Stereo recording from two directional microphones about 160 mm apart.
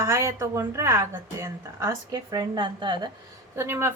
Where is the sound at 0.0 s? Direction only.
15° right (ahead or behind).